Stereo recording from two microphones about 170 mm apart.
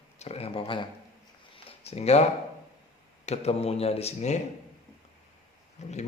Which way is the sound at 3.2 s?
40° left (ahead or behind).